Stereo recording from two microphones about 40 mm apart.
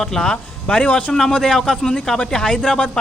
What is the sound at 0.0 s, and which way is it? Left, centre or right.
Speech, centre.